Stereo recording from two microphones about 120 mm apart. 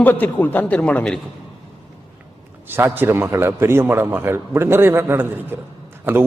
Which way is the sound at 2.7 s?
20° right (ahead or behind).